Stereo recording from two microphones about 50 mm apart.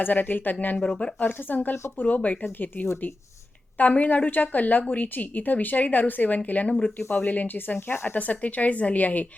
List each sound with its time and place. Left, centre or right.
0.0 s a woman's voice: left
0.8 s speech: centre
1.2 s a woman's voice: left
8.1 s a woman's voice: left